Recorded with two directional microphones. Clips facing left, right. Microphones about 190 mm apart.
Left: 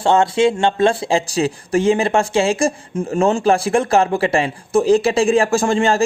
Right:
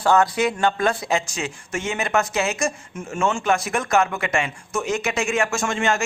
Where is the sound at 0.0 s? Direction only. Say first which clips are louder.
Left 4 dB; 25° left (ahead or behind).